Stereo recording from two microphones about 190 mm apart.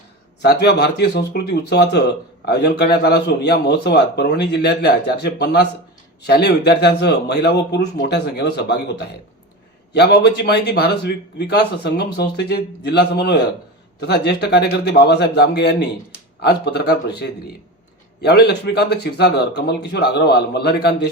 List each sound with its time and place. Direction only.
0.4 s a man's voice: 60° left (ahead or behind)